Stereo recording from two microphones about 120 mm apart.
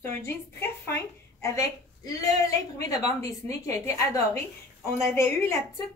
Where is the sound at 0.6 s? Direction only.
20° left (ahead or behind).